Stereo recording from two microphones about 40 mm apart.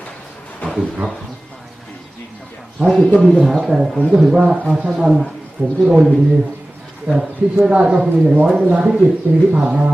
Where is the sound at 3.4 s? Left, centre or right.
Centre.